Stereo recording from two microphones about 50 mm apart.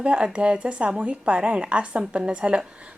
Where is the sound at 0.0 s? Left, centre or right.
Right.